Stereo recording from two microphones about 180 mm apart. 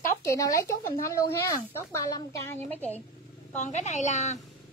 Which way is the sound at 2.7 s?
10° left (ahead or behind).